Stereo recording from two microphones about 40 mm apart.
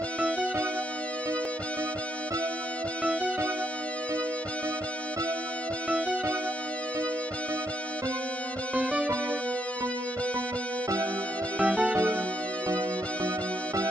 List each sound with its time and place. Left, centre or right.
8.7 s music: right
11.6 s music: right